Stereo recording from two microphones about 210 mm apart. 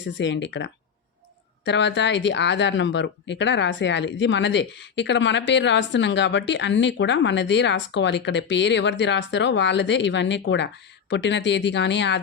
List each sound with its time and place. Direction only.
0.2 s speech: 60° left (ahead or behind)